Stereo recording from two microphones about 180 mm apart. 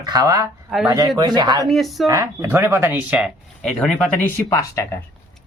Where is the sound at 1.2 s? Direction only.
25° right (ahead or behind).